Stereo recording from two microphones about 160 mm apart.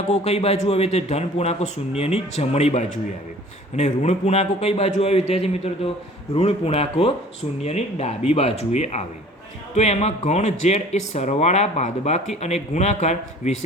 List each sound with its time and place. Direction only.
0.1 s a man's voice: 40° left (ahead or behind)